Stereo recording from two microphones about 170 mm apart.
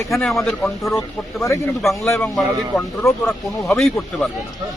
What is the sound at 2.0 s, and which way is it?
Speech, 15° left (ahead or behind).